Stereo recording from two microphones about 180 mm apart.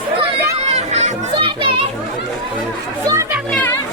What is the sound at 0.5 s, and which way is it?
Children playing, 35° right (ahead or behind).